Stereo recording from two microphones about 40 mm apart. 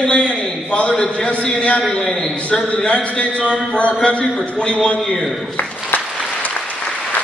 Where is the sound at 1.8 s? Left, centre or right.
Centre.